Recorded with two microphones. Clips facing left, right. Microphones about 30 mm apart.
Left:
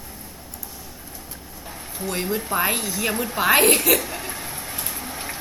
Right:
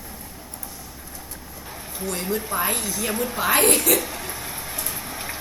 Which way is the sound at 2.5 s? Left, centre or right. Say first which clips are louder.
Left 2 dB; centre.